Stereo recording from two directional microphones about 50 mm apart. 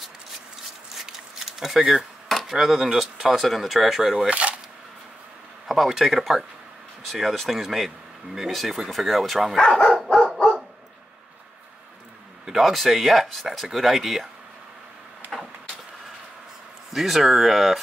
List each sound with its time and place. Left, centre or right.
1.6 s a sound: centre
2.5 s speech: centre
4.3 s a sound: right
5.7 s speech: centre
10.3 s dog: centre
12.4 s speech: centre
16.9 s speech: centre